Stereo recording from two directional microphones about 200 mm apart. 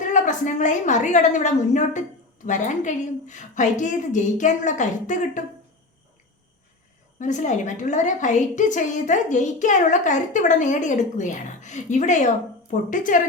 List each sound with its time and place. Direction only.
0.0 s a woman's voice: 40° left (ahead or behind)
7.2 s a woman's voice: 35° left (ahead or behind)